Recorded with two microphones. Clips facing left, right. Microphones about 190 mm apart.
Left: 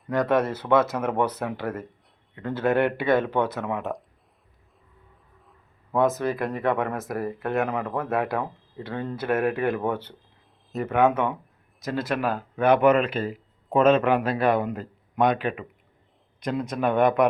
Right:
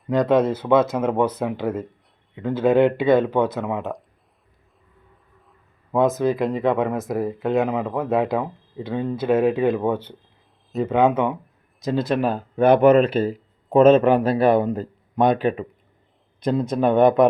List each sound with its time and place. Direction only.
0.1 s speech: 15° right (ahead or behind)
5.9 s speech: 15° right (ahead or behind)